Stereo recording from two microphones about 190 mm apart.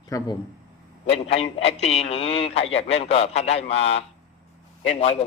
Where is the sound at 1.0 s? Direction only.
30° left (ahead or behind).